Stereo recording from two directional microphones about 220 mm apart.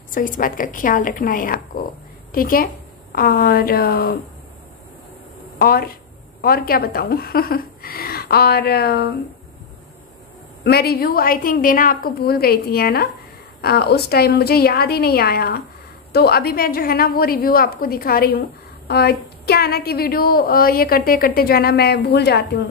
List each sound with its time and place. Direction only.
0.1 s a woman's voice: 40° left (ahead or behind)
5.6 s a woman's voice: 45° left (ahead or behind)
10.6 s a woman's voice: 45° left (ahead or behind)